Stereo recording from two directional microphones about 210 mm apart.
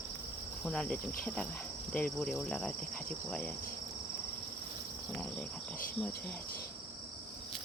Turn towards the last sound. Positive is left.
turn(degrees=10)  # may be behind; listen again after turning